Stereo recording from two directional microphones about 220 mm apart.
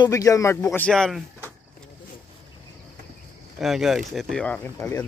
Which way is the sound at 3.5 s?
Centre (ahead or behind).